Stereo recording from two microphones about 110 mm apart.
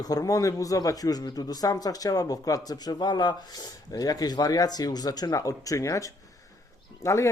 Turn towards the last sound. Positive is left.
turn(degrees=25)  # may be behind; listen again after turning